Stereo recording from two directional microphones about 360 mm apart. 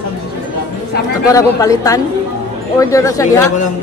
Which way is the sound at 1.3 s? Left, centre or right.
Centre.